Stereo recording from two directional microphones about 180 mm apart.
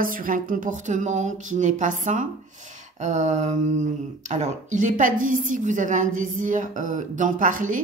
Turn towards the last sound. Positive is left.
turn(degrees=-45)  # may be behind; listen again after turning